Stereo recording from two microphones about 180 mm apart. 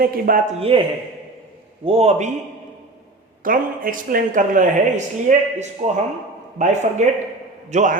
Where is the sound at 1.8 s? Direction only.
35° right (ahead or behind).